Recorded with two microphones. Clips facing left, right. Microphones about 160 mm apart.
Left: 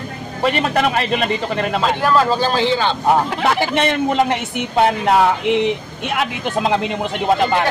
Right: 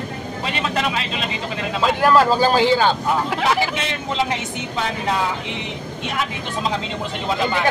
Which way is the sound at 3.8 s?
65° left (ahead or behind).